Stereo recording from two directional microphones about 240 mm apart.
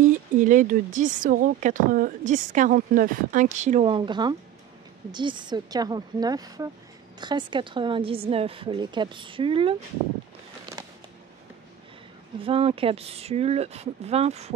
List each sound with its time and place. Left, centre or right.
0.0 s a woman's voice: right
12.4 s a woman's voice: right